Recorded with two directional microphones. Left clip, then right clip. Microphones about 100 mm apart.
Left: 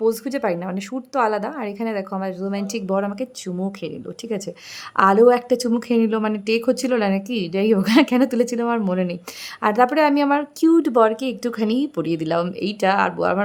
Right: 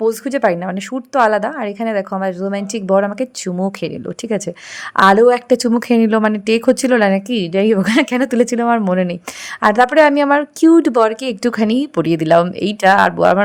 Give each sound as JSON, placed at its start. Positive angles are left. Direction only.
{"t": 0.0, "sound": "a woman's voice", "side_deg": -40}